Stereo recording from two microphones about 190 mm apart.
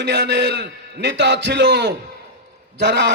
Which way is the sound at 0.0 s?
65° right (ahead or behind).